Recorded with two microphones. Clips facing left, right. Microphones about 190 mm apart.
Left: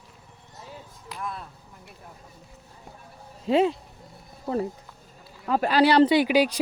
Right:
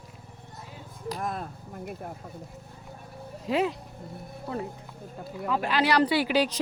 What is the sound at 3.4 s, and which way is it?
Speech, 25° left (ahead or behind).